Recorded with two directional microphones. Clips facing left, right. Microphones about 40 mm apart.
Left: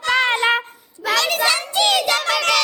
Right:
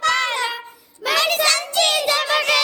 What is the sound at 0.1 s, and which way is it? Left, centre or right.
Child singing, left.